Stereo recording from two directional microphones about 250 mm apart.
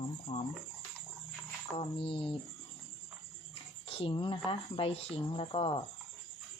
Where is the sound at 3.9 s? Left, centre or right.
Left.